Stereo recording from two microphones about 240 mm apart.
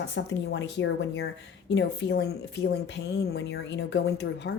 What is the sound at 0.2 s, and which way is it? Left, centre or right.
Speech, left.